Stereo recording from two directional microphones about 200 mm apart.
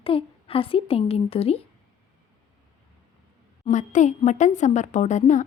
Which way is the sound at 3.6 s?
35° left (ahead or behind).